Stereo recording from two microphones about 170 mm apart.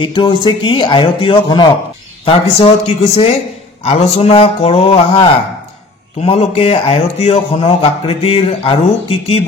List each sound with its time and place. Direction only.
0.0 s speech: 30° left (ahead or behind)
3.8 s speech: 35° left (ahead or behind)